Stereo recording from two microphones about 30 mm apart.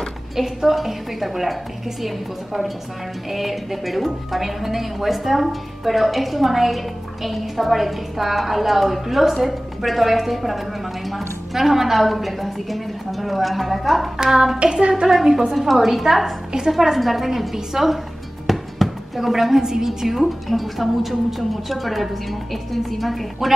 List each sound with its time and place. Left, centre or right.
0.4 s a woman's voice: centre
14.1 s a woman's voice: centre
14.6 s child singing: right
15.5 s a woman's voice: centre
18.5 s a sound: centre
19.6 s a woman's voice: centre
20.2 s a woman's voice: centre